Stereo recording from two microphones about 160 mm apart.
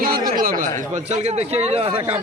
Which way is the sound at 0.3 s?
60° right (ahead or behind).